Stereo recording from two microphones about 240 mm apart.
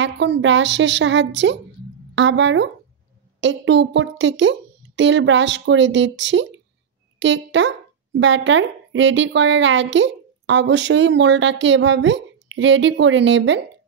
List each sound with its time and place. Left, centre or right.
0.0 s a woman's voice: right